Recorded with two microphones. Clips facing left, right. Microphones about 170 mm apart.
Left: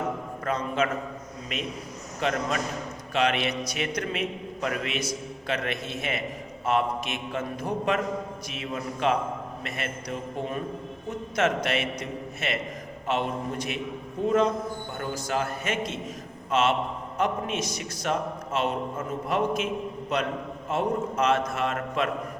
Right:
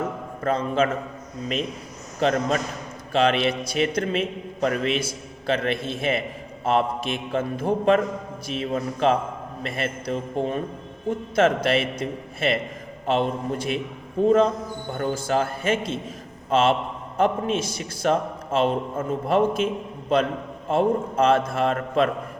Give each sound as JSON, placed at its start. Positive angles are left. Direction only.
{"t": 0.4, "sound": "a man's voice", "side_deg": -30}
{"t": 2.2, "sound": "a man's voice", "side_deg": -35}